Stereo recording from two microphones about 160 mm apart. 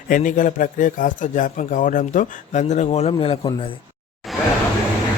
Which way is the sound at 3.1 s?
30° left (ahead or behind).